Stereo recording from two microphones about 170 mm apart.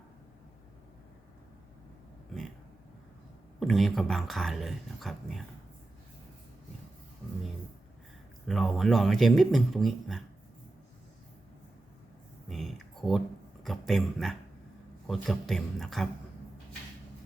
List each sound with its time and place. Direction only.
3.6 s speech: centre (ahead or behind)
8.4 s speech: centre (ahead or behind)
12.5 s a sound: centre (ahead or behind)
13.7 s speech: centre (ahead or behind)